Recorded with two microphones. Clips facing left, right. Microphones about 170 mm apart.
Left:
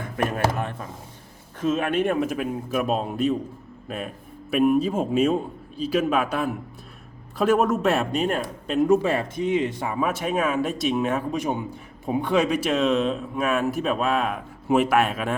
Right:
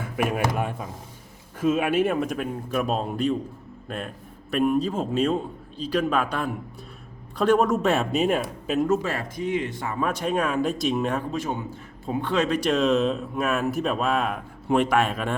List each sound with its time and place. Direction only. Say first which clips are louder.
0.0 s a sound: even; 10° right (ahead or behind)
0.5 s a man's voice: right 2 dB; 10° right (ahead or behind)
8.9 s speech: left 4 dB; 15° left (ahead or behind)
11.3 s a man's voice: left 2 dB; 15° left (ahead or behind)